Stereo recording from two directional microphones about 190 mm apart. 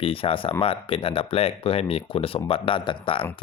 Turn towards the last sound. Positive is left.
turn(degrees=25)  # may be behind; listen again after turning